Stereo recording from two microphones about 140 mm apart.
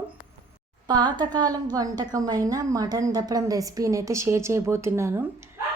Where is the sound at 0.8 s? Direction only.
30° right (ahead or behind).